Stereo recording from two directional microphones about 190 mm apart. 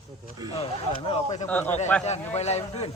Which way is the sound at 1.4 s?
5° left (ahead or behind).